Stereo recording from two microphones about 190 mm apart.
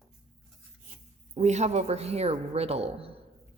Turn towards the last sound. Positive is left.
turn(degrees=-30)  # may be behind; listen again after turning